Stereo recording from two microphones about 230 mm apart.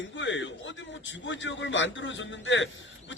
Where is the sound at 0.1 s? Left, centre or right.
Left.